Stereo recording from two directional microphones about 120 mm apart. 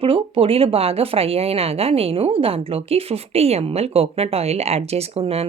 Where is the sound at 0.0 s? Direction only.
50° right (ahead or behind).